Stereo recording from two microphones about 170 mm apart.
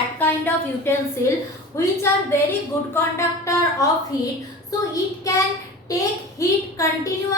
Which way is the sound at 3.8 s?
20° left (ahead or behind).